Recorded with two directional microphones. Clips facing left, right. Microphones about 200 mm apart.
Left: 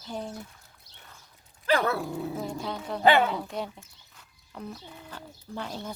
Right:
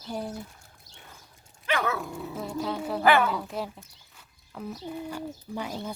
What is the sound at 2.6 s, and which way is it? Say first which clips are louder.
Speech: right 3 dB; 5° right (ahead or behind).